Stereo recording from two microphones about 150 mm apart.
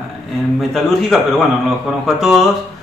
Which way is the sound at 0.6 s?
Centre (ahead or behind).